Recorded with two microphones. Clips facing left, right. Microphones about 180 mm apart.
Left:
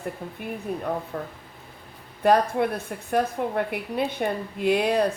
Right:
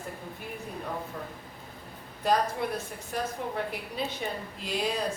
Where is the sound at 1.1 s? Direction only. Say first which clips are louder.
Left 6 dB; 60° left (ahead or behind).